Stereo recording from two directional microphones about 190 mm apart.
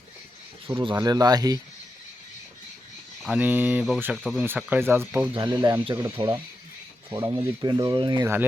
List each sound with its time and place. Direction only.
0.7 s speech: 25° right (ahead or behind)
3.2 s speech: 10° right (ahead or behind)
5.3 s speech: 25° right (ahead or behind)